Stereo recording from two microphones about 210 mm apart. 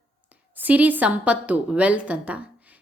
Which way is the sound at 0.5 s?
5° right (ahead or behind).